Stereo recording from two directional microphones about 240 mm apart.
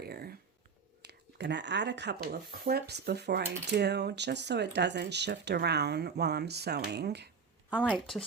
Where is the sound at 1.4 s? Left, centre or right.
Right.